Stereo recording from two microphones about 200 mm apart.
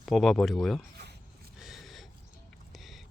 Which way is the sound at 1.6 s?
Centre (ahead or behind).